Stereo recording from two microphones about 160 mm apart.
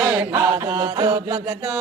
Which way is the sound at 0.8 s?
30° right (ahead or behind).